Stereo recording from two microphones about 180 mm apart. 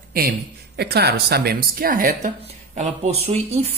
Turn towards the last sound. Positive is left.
turn(degrees=-35)  # may be behind; listen again after turning